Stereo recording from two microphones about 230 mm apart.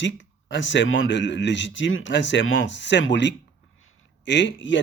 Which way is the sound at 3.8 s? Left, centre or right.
Left.